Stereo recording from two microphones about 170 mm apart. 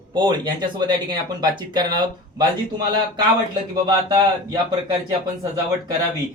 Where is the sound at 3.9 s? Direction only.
25° right (ahead or behind).